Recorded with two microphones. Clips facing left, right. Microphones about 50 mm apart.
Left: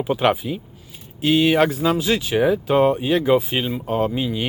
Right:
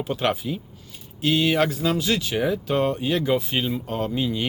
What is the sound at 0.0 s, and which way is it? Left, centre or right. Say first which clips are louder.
Speech: left 5 dB; centre.